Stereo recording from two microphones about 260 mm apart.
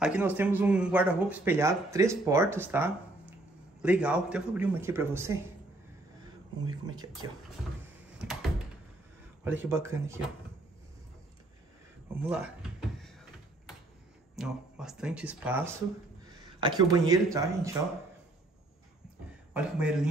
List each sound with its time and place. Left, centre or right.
0.0 s speech: centre
6.6 s speech: centre
8.3 s door: centre
9.4 s speech: centre
12.2 s speech: centre
14.3 s speech: centre
16.5 s a sound: centre
17.0 s speech: centre
19.5 s speech: centre